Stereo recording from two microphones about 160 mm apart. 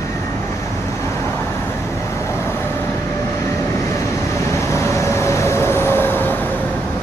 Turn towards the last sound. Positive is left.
turn(degrees=10)  # may be behind; listen again after turning